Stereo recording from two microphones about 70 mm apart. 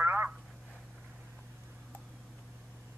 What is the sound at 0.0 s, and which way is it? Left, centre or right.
Telephone, right.